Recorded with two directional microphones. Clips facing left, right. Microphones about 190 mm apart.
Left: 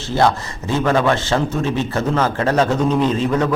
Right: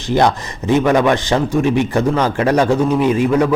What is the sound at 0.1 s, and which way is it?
Speech, 15° right (ahead or behind).